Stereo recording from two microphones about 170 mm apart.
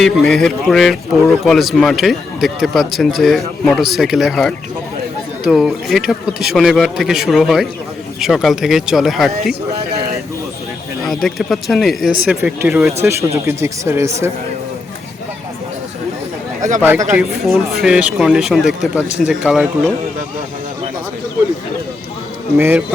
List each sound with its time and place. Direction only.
0.0 s speech: centre (ahead or behind)
11.0 s speech: centre (ahead or behind)
13.0 s speech: 15° right (ahead or behind)
16.8 s speech: 10° right (ahead or behind)
22.5 s speech: 10° right (ahead or behind)